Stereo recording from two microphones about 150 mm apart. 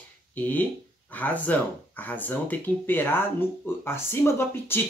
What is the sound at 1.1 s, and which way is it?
Speech, 10° left (ahead or behind).